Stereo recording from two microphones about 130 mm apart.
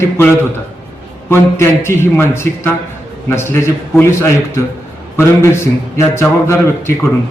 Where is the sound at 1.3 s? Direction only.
20° left (ahead or behind).